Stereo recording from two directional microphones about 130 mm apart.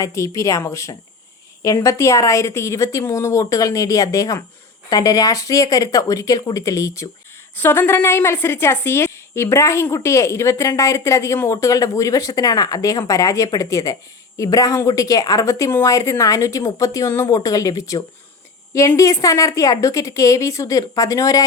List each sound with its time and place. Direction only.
0.0 s a woman's voice: 25° left (ahead or behind)